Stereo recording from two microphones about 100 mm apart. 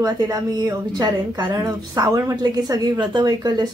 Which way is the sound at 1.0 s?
50° right (ahead or behind).